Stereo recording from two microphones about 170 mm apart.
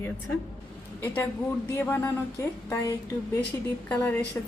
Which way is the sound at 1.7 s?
15° left (ahead or behind).